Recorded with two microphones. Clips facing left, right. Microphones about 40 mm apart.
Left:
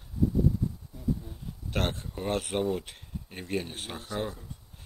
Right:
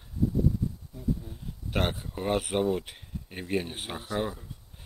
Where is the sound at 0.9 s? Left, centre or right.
Centre.